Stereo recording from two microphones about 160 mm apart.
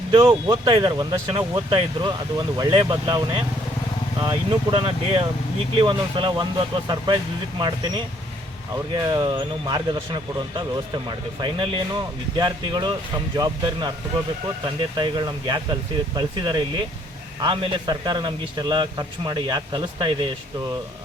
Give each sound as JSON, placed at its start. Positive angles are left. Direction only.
{"t": 0.1, "sound": "speech", "side_deg": -30}
{"t": 8.9, "sound": "speech", "side_deg": -25}